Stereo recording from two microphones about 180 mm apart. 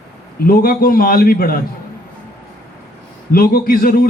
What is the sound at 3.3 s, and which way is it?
Speech, 55° left (ahead or behind).